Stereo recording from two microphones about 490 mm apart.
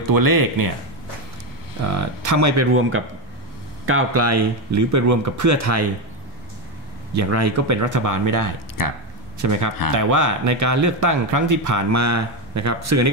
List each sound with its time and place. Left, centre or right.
0.1 s speech: right
1.9 s speech: right
7.2 s speech: right
8.8 s speech: left
9.4 s speech: right